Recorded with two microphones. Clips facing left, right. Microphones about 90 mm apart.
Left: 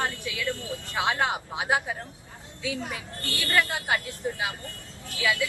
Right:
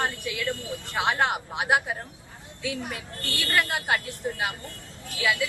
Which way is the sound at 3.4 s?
15° right (ahead or behind).